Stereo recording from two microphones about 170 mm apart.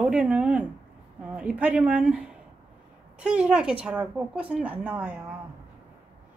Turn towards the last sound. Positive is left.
turn(degrees=-10)  # may be behind; listen again after turning